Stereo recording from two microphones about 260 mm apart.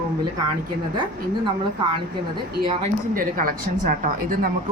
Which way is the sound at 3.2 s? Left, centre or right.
Right.